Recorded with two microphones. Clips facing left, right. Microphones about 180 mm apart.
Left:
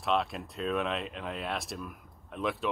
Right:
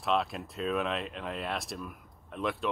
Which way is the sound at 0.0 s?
Centre (ahead or behind).